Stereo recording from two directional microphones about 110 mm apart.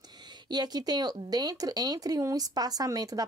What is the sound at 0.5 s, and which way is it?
Speech, 40° right (ahead or behind).